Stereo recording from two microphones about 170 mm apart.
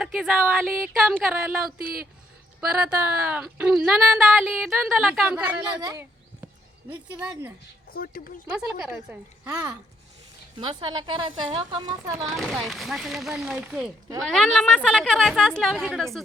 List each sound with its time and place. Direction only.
0.0 s a sound: 5° right (ahead or behind)
0.8 s speech: 10° right (ahead or behind)
5.8 s a woman's voice: 20° right (ahead or behind)
6.9 s speech: 10° right (ahead or behind)
7.9 s speech: 60° left (ahead or behind)
8.4 s speech: 10° right (ahead or behind)
10.6 s a woman's voice: 30° right (ahead or behind)
12.3 s speech: centre (ahead or behind)